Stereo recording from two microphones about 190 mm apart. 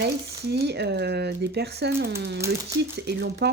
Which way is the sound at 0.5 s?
60° right (ahead or behind).